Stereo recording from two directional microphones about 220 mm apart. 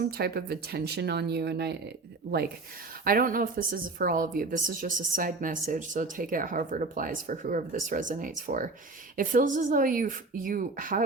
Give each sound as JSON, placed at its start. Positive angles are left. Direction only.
{"t": 0.0, "sound": "speech", "side_deg": -45}
{"t": 3.0, "sound": "a woman's voice", "side_deg": -40}